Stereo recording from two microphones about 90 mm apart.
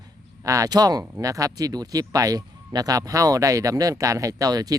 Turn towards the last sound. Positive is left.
turn(degrees=-45)  # may be behind; listen again after turning